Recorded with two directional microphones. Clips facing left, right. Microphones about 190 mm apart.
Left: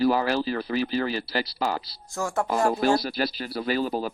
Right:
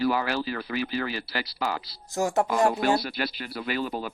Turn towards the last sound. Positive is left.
turn(degrees=35)  # may be behind; listen again after turning